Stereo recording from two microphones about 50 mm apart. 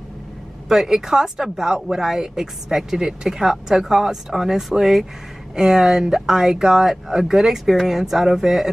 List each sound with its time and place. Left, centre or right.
0.7 s speech: centre